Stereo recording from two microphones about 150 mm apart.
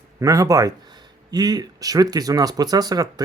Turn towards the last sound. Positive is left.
turn(degrees=-25)  # may be behind; listen again after turning